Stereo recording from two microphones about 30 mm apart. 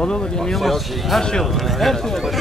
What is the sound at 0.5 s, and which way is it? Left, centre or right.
Speech, centre.